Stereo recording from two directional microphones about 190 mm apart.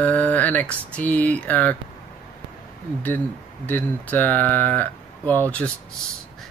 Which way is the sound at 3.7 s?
10° left (ahead or behind).